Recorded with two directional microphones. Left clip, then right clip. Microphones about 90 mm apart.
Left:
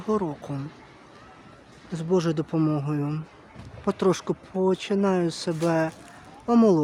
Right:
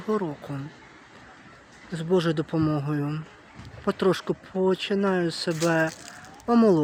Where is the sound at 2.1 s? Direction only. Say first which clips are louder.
Right 1 dB; 20° left (ahead or behind).